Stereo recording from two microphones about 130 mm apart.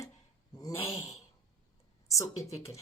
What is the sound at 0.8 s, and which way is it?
Speech, 45° left (ahead or behind).